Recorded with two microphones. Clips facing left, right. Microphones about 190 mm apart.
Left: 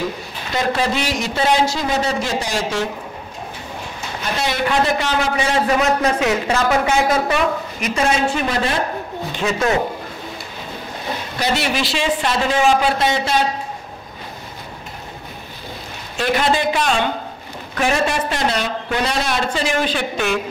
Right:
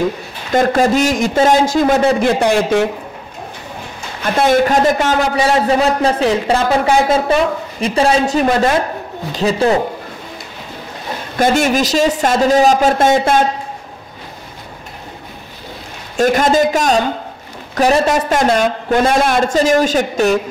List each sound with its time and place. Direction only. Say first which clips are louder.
0.5 s a man's voice: right 7 dB; 50° right (ahead or behind)
4.2 s a man's voice: right 9 dB; 50° right (ahead or behind)
5.7 s speech: right 3 dB; 30° right (ahead or behind)
11.3 s a man's voice: right 8 dB; 50° right (ahead or behind)
16.2 s a man's voice: right 6 dB; 45° right (ahead or behind)